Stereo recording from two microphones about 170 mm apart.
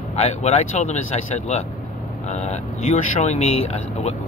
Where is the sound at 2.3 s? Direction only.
40° left (ahead or behind).